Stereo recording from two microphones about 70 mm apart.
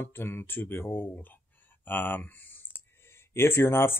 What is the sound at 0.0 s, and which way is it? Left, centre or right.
Speech, left.